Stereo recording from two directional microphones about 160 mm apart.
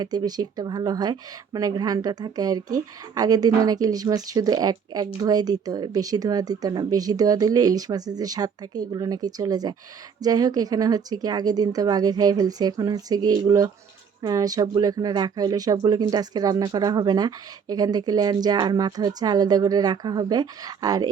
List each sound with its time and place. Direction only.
0.0 s a woman's voice: 25° right (ahead or behind)